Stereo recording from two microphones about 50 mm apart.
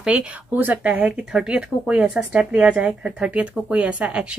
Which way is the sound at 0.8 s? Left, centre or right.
Right.